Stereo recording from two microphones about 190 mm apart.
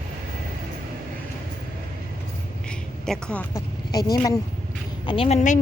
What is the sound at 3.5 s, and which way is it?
Speech, 20° left (ahead or behind).